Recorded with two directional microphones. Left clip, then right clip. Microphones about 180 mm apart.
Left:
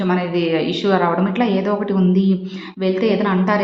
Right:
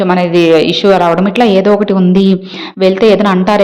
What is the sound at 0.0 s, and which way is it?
A woman's voice, 45° right (ahead or behind).